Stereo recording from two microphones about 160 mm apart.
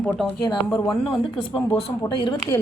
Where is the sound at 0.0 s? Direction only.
5° left (ahead or behind).